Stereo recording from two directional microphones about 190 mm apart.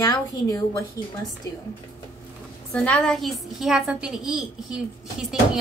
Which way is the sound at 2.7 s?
5° left (ahead or behind).